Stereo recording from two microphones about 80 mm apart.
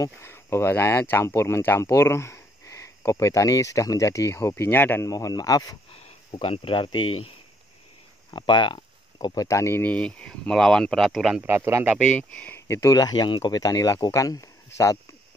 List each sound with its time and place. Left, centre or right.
0.0 s speech: left
1.9 s a sound: left
3.1 s speech: left
5.0 s speech: left
6.3 s speech: left
8.3 s a sound: left
9.3 s speech: left
9.8 s speech: centre
11.1 s speech: centre
11.4 s speech: right
12.1 s speech: left
12.5 s speech: left
12.9 s speech: left